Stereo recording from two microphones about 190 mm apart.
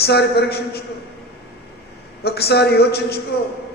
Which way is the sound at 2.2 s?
55° left (ahead or behind).